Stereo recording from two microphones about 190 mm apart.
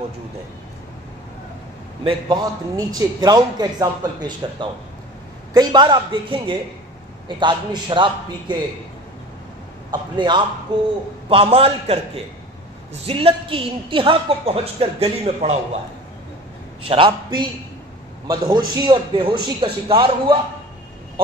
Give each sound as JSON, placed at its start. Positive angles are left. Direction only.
{"t": 2.0, "sound": "a man's voice", "side_deg": -25}
{"t": 9.8, "sound": "a man's voice", "side_deg": -25}
{"t": 13.0, "sound": "a woman's voice", "side_deg": -30}
{"t": 16.8, "sound": "a man's voice", "side_deg": -30}